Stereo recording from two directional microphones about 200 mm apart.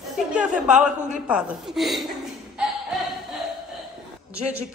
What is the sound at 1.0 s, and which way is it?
Speech, 40° right (ahead or behind).